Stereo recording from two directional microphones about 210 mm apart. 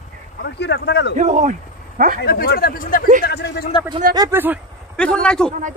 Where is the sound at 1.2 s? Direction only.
35° right (ahead or behind).